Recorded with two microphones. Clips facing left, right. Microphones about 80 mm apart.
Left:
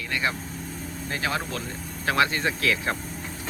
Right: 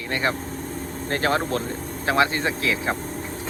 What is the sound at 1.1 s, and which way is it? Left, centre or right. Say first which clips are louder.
Speech: right 6 dB; right.